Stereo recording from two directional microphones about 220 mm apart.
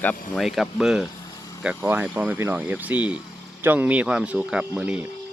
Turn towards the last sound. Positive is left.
turn(degrees=-5)  # may be behind; listen again after turning